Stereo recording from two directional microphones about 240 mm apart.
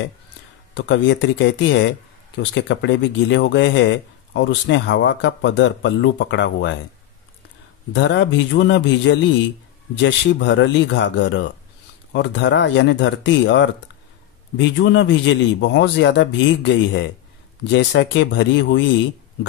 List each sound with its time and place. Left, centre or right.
0.7 s speech: left
7.9 s speech: left